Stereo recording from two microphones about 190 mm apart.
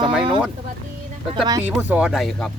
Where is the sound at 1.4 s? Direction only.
20° right (ahead or behind).